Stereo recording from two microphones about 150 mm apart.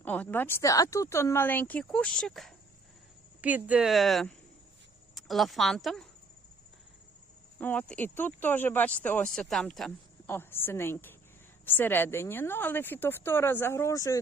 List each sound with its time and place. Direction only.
0.0 s speech: 10° left (ahead or behind)
3.4 s speech: 10° right (ahead or behind)
7.6 s speech: 10° left (ahead or behind)
10.2 s speech: 15° left (ahead or behind)